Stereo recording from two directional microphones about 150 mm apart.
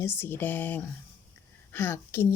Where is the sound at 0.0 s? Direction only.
15° left (ahead or behind).